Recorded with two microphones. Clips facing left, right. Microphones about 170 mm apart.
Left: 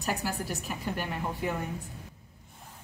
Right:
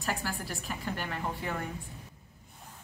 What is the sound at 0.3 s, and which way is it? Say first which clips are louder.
Speech: left 4 dB; 40° left (ahead or behind).